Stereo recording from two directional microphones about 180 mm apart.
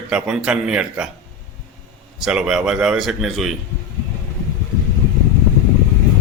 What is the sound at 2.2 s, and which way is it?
Speech, 5° right (ahead or behind).